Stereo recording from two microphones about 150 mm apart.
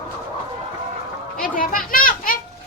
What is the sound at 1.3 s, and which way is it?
Children playing, 70° left (ahead or behind).